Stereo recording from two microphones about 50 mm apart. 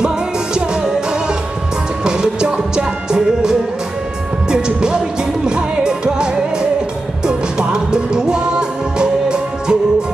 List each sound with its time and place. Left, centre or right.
2.0 s music: centre